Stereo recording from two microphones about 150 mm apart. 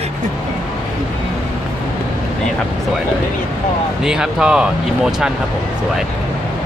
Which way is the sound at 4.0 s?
5° right (ahead or behind).